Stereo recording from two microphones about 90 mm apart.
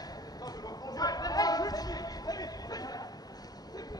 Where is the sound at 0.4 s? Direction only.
45° left (ahead or behind).